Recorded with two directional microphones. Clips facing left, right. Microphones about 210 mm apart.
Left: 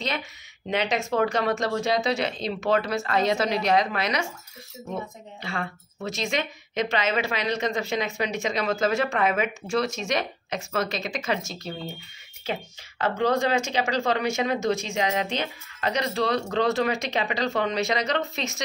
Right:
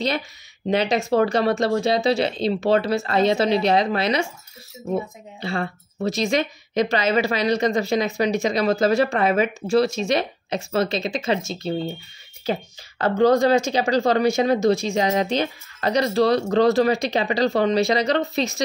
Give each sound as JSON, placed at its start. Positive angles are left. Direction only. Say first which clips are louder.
{"t": 0.7, "sound": "speech", "louder": "right 6 dB", "side_deg": -35}
{"t": 5.4, "sound": "speech", "louder": "right 6 dB", "side_deg": -35}